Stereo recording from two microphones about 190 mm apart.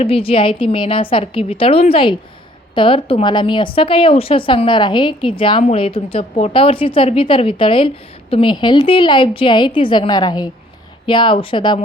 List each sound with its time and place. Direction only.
0.0 s a woman's voice: 30° left (ahead or behind)